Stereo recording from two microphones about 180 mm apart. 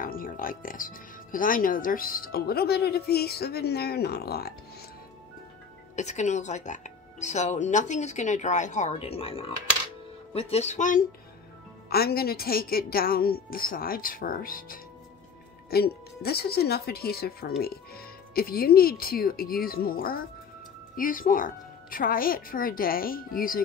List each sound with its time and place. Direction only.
0.0 s speech: 50° left (ahead or behind)
5.9 s speech: 40° left (ahead or behind)
11.9 s a woman's voice: 60° left (ahead or behind)